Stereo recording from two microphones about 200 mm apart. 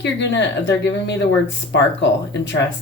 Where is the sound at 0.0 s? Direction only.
60° left (ahead or behind).